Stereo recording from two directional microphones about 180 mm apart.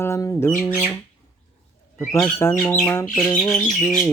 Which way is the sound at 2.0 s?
15° left (ahead or behind).